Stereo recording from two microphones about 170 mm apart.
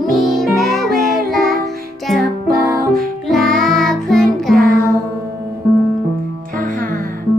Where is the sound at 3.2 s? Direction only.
Centre (ahead or behind).